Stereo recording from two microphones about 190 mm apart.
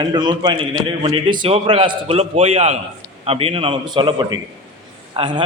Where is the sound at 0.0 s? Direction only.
20° right (ahead or behind).